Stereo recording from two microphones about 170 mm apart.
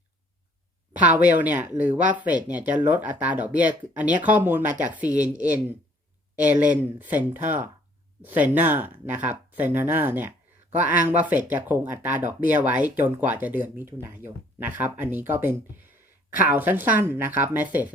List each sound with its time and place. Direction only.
1.0 s speech: 10° right (ahead or behind)